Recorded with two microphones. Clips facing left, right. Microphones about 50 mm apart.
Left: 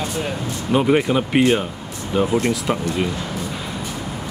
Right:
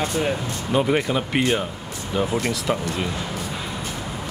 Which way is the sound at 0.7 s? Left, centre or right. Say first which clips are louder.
Left 4 dB; centre.